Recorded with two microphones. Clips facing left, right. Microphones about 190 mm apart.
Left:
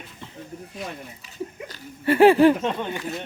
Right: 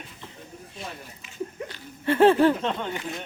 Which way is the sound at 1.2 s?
40° left (ahead or behind).